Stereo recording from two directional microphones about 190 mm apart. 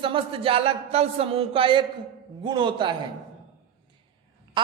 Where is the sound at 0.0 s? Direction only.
30° right (ahead or behind).